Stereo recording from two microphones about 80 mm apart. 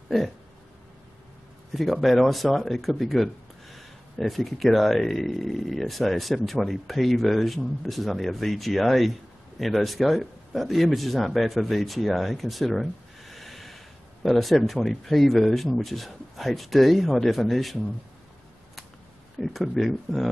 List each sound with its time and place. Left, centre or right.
1.7 s speech: centre
19.4 s speech: centre